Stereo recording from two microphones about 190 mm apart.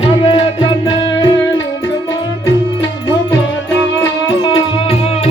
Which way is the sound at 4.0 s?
25° left (ahead or behind).